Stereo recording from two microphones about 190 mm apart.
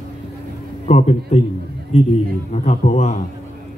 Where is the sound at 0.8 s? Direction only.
35° left (ahead or behind).